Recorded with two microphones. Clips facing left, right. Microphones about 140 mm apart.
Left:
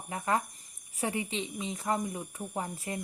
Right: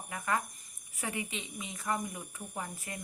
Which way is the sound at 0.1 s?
30° left (ahead or behind).